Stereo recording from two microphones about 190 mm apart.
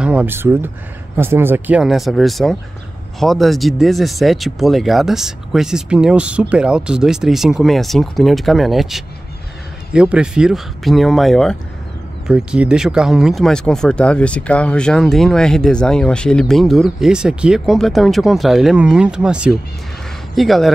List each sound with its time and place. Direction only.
0.0 s speech: 5° right (ahead or behind)